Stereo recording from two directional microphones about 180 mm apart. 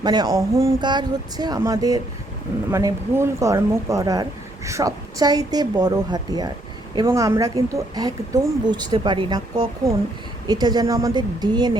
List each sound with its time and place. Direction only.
0.0 s speech: 20° right (ahead or behind)